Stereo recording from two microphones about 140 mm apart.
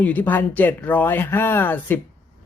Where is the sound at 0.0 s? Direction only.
10° left (ahead or behind).